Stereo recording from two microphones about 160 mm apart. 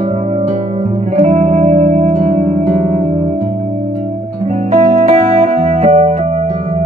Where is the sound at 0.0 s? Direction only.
45° right (ahead or behind).